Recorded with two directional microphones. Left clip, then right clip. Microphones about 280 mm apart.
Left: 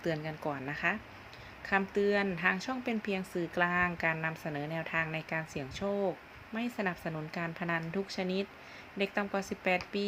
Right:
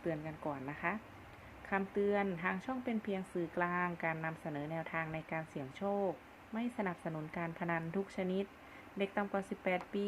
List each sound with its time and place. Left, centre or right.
0.0 s a woman's voice: centre